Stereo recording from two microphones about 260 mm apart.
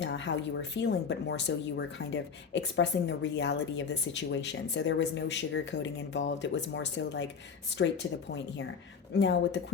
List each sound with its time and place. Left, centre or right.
0.0 s speech: left
9.1 s speech: left